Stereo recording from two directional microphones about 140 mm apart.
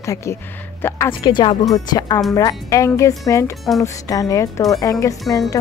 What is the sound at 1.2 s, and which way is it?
A woman's voice, 35° left (ahead or behind).